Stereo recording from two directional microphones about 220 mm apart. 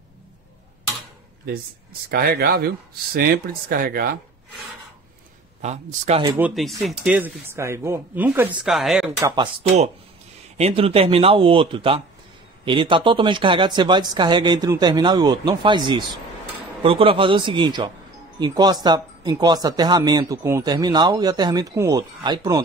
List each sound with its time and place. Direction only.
2.0 s speech: 45° right (ahead or behind)
5.6 s speech: 30° right (ahead or behind)
6.2 s speech: 10° right (ahead or behind)
9.2 s speech: 20° right (ahead or behind)